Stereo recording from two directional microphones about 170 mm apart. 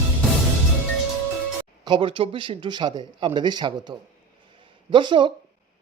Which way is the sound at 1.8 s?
30° right (ahead or behind).